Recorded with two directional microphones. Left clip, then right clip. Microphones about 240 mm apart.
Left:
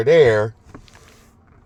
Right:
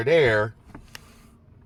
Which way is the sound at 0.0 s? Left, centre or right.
Centre.